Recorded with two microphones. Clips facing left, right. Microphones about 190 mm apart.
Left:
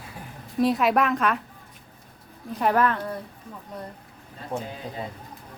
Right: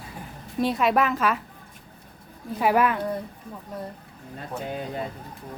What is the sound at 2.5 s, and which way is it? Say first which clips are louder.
Speech: right 1 dB; 10° right (ahead or behind).